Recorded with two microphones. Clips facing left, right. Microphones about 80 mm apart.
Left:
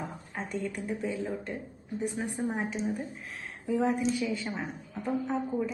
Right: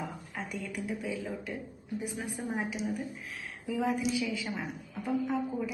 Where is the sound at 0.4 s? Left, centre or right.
Left.